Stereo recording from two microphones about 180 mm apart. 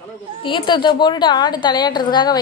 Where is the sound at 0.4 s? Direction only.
25° left (ahead or behind).